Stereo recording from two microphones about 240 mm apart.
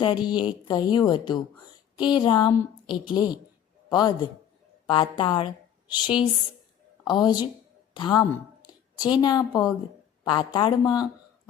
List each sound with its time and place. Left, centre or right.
0.0 s a woman's voice: centre